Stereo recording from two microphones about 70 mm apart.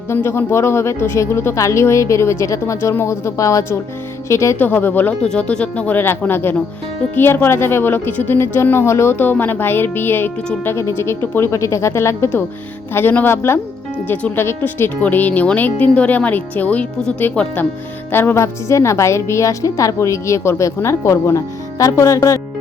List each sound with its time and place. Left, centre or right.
0.1 s a woman's voice: left
4.5 s speech: left
5.2 s a woman's voice: centre; by 13.6 s left
14.1 s speech: centre
14.3 s a woman's voice: left; by 17.5 s centre
18.1 s a woman's voice: left